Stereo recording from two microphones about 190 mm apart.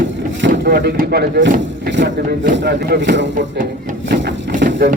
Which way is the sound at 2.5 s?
60° right (ahead or behind).